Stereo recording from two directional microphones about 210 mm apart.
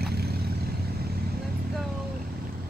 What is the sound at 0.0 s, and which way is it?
Vehicle, 50° right (ahead or behind).